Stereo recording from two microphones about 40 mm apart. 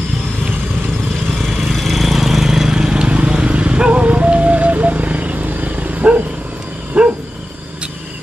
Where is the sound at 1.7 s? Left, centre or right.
Centre; by 7.0 s right.